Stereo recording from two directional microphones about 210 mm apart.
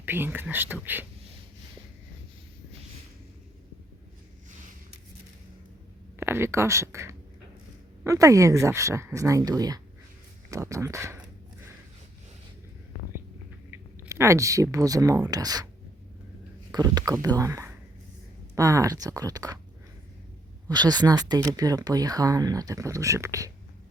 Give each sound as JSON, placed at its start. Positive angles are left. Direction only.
{"t": 0.0, "sound": "speech", "side_deg": -10}
{"t": 6.1, "sound": "speech", "side_deg": -10}
{"t": 13.7, "sound": "speech", "side_deg": -10}
{"t": 16.7, "sound": "speech", "side_deg": -20}
{"t": 20.7, "sound": "speech", "side_deg": -20}